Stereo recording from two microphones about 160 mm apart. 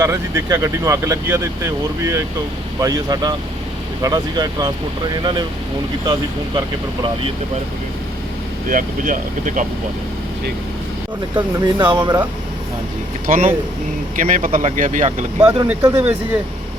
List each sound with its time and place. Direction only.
0.0 s speech: 15° right (ahead or behind)
8.7 s speech: 55° right (ahead or behind)
11.3 s speech: 30° right (ahead or behind)
13.2 s speech: 60° right (ahead or behind)
15.6 s speech: 15° right (ahead or behind)